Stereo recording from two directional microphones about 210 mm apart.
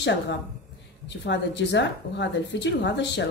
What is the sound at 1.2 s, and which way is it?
A woman's voice, 55° left (ahead or behind).